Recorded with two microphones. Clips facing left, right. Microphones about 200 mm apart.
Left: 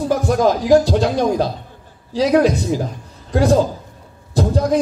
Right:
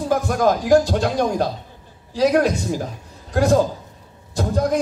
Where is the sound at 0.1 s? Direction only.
50° right (ahead or behind).